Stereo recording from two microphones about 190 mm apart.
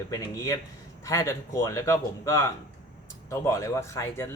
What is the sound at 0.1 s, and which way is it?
Speech, 20° left (ahead or behind).